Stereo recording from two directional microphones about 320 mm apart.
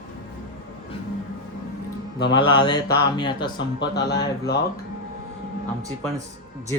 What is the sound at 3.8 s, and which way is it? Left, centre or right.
Speech, left.